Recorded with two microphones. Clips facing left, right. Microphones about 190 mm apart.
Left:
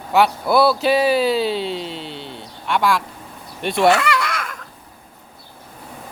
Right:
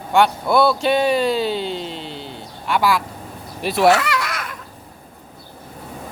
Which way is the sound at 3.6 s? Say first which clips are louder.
Right 1 dB; centre (ahead or behind).